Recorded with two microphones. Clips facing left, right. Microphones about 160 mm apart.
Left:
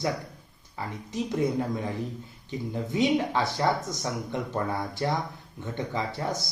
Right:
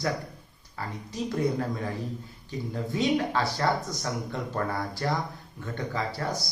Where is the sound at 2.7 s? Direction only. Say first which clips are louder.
Left 2 dB; 20° left (ahead or behind).